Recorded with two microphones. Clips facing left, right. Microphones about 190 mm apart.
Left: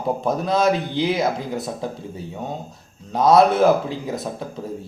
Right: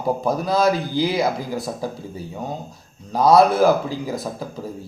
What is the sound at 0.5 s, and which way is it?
Speech, 25° left (ahead or behind).